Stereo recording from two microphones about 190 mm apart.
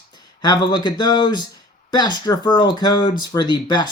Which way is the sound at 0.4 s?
20° left (ahead or behind).